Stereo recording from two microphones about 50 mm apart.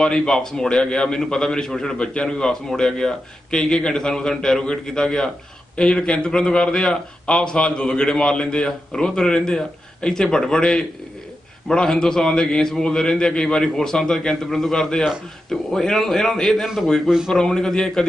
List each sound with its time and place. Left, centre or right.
0.0 s a man's voice: centre
16.6 s a man's voice: centre
17.3 s a man's voice: centre